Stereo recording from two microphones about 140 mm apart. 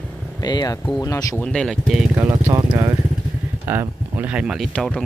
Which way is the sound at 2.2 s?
20° right (ahead or behind).